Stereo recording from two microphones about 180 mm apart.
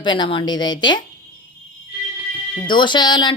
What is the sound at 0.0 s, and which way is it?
Speech, 25° left (ahead or behind).